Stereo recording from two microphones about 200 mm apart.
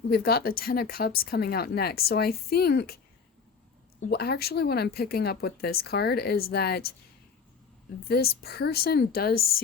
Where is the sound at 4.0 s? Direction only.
50° left (ahead or behind).